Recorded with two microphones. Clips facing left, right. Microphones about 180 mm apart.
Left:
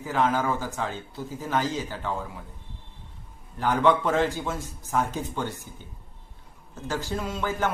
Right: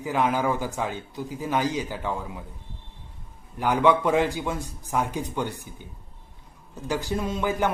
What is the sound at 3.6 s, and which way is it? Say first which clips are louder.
Speech: right 1 dB; 10° right (ahead or behind).